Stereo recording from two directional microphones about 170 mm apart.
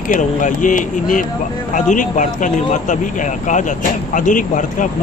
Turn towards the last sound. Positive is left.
turn(degrees=50)  # may be behind; listen again after turning